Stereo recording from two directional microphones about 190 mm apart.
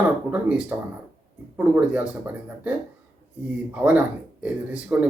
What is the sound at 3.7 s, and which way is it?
Speech, 10° right (ahead or behind).